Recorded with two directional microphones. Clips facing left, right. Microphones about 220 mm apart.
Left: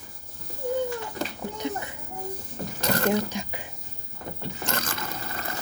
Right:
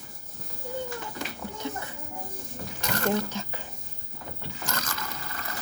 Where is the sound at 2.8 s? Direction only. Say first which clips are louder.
Left 4 dB; 35° left (ahead or behind).